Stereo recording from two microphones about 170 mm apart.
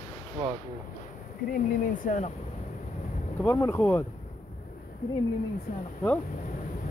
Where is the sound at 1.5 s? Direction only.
50° left (ahead or behind).